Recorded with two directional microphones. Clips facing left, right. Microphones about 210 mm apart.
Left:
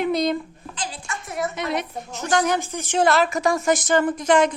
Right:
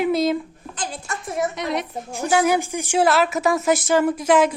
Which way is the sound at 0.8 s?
45° right (ahead or behind).